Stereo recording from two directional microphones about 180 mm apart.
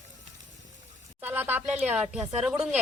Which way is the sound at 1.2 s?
10° right (ahead or behind).